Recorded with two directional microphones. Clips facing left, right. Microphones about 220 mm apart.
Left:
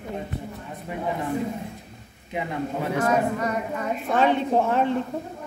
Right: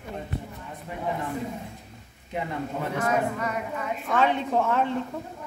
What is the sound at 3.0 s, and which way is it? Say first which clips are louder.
A woman's voice: left 3 dB; 40° left (ahead or behind).